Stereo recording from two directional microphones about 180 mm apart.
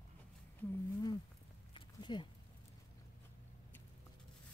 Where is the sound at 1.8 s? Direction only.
25° left (ahead or behind).